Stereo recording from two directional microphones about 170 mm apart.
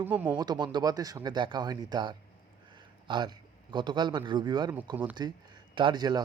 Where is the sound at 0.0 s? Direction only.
10° right (ahead or behind).